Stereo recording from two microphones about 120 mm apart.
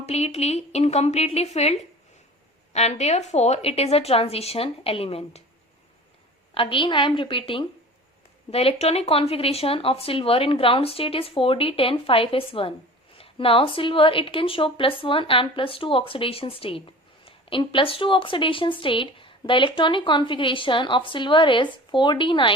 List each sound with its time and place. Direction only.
0.0 s a woman's voice: 60° left (ahead or behind)
6.5 s speech: 45° left (ahead or behind)
8.4 s speech: 60° left (ahead or behind)